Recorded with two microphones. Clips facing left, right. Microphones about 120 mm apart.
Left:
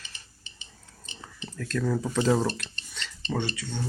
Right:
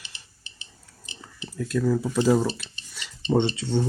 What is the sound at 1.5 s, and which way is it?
Speech, 10° right (ahead or behind).